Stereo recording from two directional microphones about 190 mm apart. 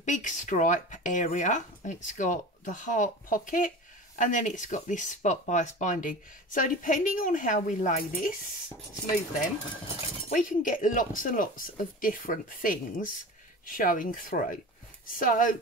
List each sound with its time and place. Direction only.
0.0 s speech: 40° left (ahead or behind)
10.3 s speech: 45° left (ahead or behind)